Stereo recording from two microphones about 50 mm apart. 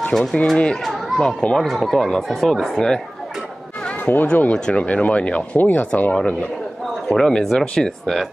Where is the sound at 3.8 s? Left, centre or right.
Left.